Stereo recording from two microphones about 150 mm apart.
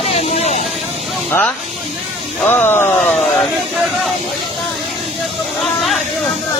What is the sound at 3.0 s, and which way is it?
Speech, 5° left (ahead or behind).